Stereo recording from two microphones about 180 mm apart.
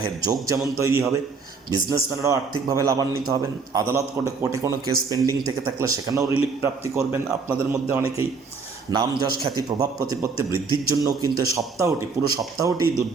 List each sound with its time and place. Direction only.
0.0 s a man's voice: 20° right (ahead or behind)
8.9 s a man's voice: 20° right (ahead or behind)